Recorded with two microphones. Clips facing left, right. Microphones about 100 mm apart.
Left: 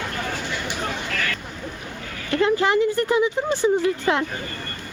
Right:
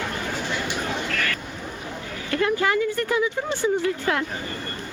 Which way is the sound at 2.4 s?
25° left (ahead or behind).